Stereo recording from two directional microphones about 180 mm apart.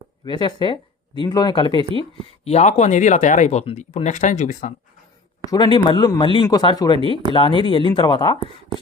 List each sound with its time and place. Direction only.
0.3 s speech: 25° left (ahead or behind)
2.4 s speech: 40° left (ahead or behind)
5.5 s speech: 25° left (ahead or behind)